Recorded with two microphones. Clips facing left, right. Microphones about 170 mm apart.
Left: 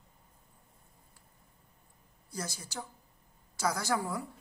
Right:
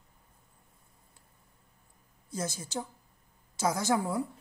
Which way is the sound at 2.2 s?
20° right (ahead or behind).